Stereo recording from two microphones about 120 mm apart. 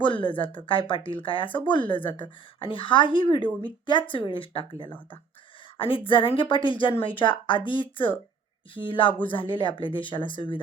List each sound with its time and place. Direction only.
0.0 s speech: 45° left (ahead or behind)
5.7 s speech: 45° left (ahead or behind)